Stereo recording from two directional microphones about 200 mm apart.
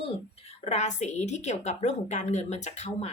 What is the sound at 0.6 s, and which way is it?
A woman's voice, 35° left (ahead or behind).